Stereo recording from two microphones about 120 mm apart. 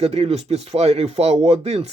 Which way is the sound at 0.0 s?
60° right (ahead or behind).